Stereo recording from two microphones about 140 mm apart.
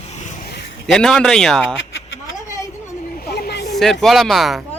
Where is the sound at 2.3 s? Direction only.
25° left (ahead or behind).